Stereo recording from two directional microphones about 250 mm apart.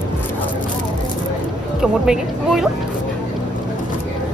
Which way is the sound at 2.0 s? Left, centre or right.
Centre.